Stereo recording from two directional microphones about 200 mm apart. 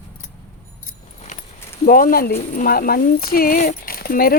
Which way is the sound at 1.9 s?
45° left (ahead or behind).